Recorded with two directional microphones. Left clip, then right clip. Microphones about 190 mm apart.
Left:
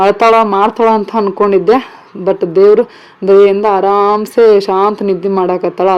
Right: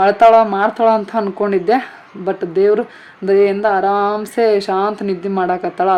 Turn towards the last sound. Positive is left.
turn(degrees=15)  # may be behind; listen again after turning